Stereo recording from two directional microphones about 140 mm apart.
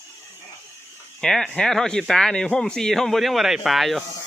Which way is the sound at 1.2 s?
5° left (ahead or behind).